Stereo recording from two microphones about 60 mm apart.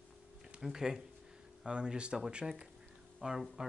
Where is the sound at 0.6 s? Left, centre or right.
Centre.